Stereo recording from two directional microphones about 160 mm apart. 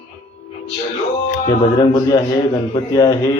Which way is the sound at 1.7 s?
25° left (ahead or behind).